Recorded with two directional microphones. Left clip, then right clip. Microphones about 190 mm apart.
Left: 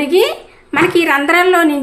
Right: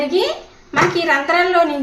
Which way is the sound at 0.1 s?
40° left (ahead or behind).